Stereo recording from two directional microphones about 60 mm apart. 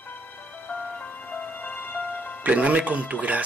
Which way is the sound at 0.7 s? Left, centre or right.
Left.